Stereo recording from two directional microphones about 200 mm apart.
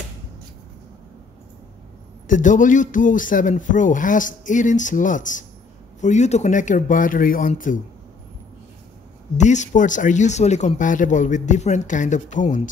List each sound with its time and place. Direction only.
2.2 s speech: 40° left (ahead or behind)
9.4 s speech: 35° left (ahead or behind)